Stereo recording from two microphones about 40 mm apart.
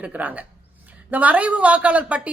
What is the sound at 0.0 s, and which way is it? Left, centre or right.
A woman's voice, right.